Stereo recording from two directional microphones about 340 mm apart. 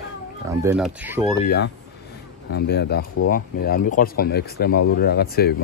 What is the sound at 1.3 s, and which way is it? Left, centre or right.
Speech, left.